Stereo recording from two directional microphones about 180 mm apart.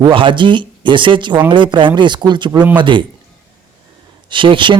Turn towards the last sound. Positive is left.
turn(degrees=-30)  # may be behind; listen again after turning